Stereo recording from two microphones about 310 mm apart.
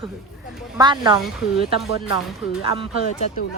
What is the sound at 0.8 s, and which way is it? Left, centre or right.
Speech, centre.